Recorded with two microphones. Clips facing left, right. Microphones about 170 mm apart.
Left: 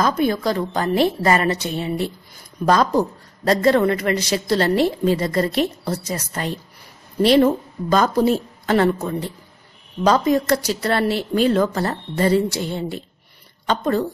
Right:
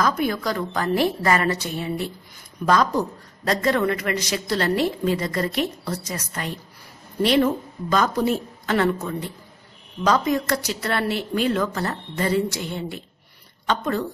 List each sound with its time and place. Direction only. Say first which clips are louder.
0.0 s a woman's voice: left 4 dB; 25° left (ahead or behind)